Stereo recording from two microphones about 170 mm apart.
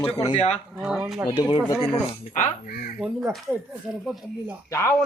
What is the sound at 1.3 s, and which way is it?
Speech, 25° left (ahead or behind).